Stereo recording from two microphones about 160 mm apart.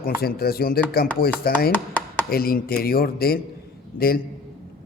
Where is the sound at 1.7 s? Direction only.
10° left (ahead or behind).